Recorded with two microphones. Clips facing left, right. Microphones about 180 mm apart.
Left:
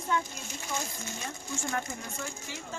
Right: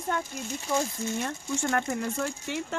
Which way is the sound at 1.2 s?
70° right (ahead or behind).